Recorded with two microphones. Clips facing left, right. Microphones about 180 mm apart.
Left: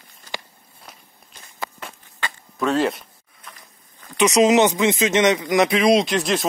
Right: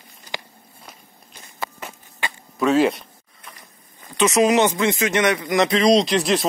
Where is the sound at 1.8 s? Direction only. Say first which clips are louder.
Right 1 dB; 5° right (ahead or behind).